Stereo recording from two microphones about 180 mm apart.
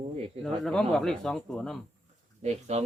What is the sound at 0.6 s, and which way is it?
Speech, 5° left (ahead or behind).